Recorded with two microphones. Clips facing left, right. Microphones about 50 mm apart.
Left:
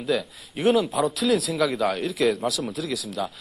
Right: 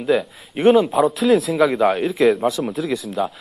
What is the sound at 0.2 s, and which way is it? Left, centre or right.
Speech, centre.